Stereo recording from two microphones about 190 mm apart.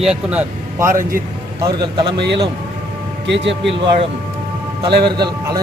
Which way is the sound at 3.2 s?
70° right (ahead or behind).